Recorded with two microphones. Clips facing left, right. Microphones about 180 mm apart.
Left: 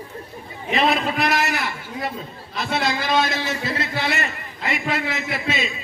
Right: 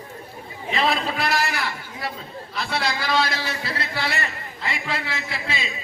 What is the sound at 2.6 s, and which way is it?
A man's voice, 20° left (ahead or behind).